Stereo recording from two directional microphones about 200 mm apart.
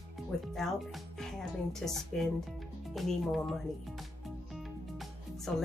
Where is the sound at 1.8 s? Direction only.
Centre (ahead or behind).